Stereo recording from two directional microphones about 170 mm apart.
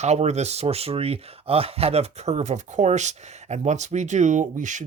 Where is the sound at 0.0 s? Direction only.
40° right (ahead or behind).